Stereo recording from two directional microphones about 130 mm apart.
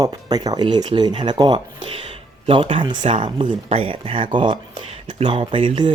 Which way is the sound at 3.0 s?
65° right (ahead or behind).